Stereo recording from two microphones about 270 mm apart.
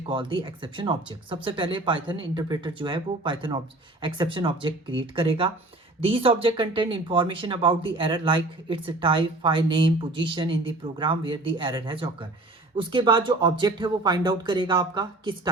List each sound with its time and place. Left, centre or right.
0.1 s speech: centre